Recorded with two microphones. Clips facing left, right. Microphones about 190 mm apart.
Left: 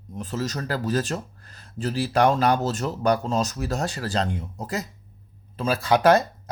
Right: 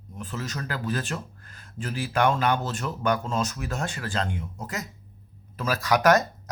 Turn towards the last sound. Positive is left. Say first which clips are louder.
# left 2 dB
turn(degrees=30)  # may be behind; listen again after turning